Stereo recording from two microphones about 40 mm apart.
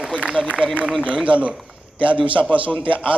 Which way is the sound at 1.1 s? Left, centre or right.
Right.